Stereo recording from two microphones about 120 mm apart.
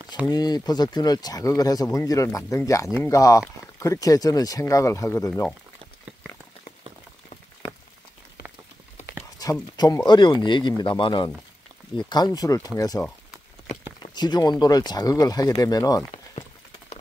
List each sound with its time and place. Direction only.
0.3 s speech: 35° left (ahead or behind)
9.4 s speech: 30° left (ahead or behind)
12.1 s speech: 30° left (ahead or behind)
14.1 s speech: 35° left (ahead or behind)